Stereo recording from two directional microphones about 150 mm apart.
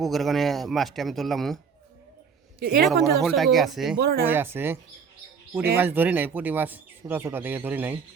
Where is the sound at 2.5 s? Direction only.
90° right.